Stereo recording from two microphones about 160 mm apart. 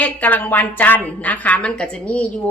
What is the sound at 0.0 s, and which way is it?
A woman's voice, 10° left (ahead or behind).